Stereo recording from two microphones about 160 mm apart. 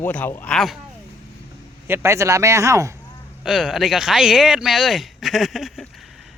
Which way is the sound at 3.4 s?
5° right (ahead or behind).